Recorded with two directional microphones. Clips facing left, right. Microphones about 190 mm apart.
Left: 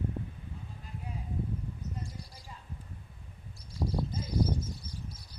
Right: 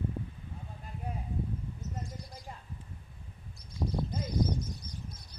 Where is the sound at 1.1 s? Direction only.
55° right (ahead or behind).